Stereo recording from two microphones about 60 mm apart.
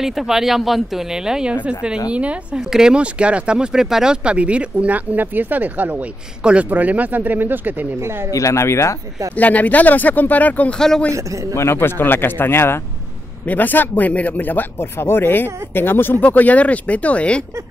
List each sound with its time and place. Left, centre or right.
0.0 s speech: centre; by 7.9 s right
8.3 s speech: left
9.4 s speech: left
11.5 s speech: left
13.5 s speech: left
14.8 s speech: left
16.2 s speech: left